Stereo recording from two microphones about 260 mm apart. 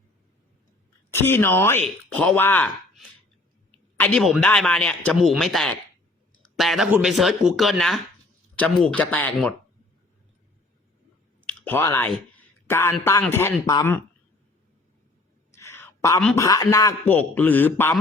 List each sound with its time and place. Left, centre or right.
1.1 s a man's voice: centre
11.4 s speech: centre
15.5 s a sound: centre
16.2 s a man's voice: centre